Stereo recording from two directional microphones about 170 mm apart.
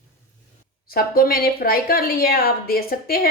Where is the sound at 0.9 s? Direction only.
60° left (ahead or behind).